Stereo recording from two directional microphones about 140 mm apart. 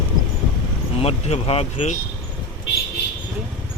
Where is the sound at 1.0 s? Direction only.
45° left (ahead or behind).